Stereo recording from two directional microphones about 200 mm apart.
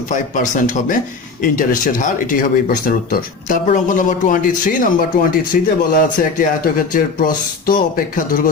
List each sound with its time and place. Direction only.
0.1 s speech: 40° left (ahead or behind)